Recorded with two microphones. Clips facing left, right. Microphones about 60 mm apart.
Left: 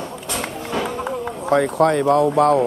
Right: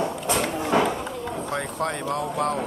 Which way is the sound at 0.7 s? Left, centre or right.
Centre.